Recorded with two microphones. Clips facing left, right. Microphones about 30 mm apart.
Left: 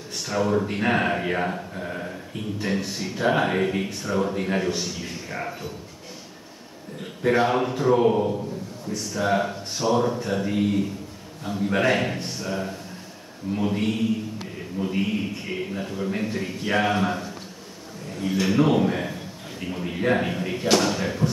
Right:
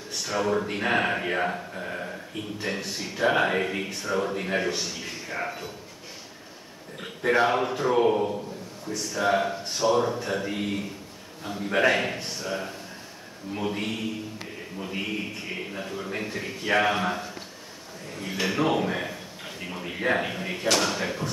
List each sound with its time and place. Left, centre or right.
0.3 s speech: centre
7.2 s speech: centre
14.8 s a man's voice: centre
15.5 s a man's voice: centre